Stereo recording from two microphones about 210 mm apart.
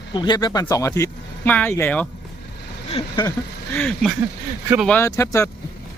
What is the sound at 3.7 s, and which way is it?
Speech, 5° left (ahead or behind).